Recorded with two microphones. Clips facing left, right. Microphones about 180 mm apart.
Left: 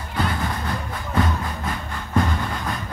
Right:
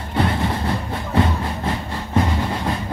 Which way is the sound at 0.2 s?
30° right (ahead or behind).